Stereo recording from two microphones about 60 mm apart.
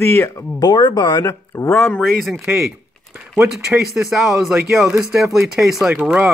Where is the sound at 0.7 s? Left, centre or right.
Left.